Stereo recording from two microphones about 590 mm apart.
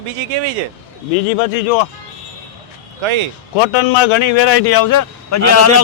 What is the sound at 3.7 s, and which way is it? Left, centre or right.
A man's voice, left.